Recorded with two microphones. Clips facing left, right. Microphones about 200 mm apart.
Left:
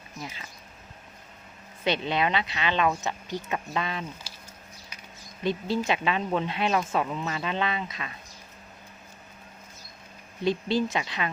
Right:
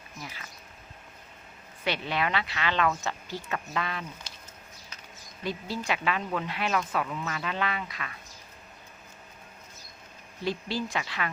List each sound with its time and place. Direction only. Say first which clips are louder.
0.2 s speech: left 4 dB; 25° left (ahead or behind)
1.8 s speech: left 4 dB; 20° left (ahead or behind)
5.4 s speech: left 6 dB; 25° left (ahead or behind)
10.4 s speech: left 6 dB; 20° left (ahead or behind)